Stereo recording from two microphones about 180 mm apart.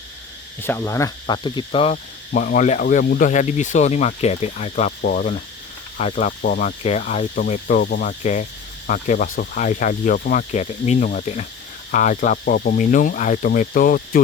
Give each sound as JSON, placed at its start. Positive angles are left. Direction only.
{"t": 0.6, "sound": "cricket", "side_deg": 15}
{"t": 6.5, "sound": "speech", "side_deg": 40}